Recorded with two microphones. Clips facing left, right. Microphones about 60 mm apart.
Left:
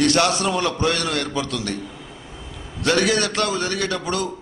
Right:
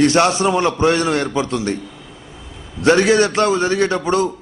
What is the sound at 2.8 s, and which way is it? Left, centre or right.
A man's voice, right.